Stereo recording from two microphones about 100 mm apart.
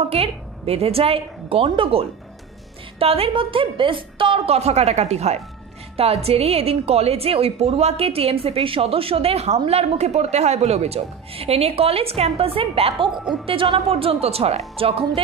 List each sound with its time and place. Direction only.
0.1 s a woman's voice: 85° right; by 13.1 s 70° right (ahead or behind)
13.1 s speech: 5° right (ahead or behind)
13.5 s a woman's voice: 65° right (ahead or behind); by 14.6 s 90° right
14.8 s a woman's voice: 70° right (ahead or behind)